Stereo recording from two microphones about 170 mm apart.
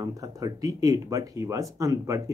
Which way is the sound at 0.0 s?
20° right (ahead or behind).